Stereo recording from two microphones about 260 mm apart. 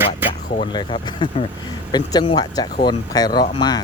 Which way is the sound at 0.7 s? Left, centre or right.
Left.